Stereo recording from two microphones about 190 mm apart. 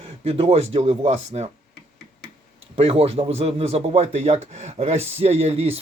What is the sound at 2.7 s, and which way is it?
Speech, 30° right (ahead or behind).